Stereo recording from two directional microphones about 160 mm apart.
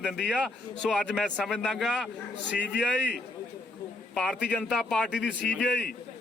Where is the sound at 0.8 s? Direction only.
5° left (ahead or behind).